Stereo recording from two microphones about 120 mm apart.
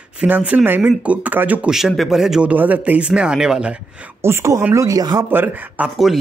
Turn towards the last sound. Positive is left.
turn(degrees=-15)  # may be behind; listen again after turning